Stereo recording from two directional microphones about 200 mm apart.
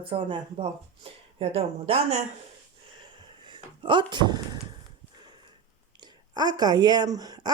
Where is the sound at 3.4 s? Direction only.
25° right (ahead or behind).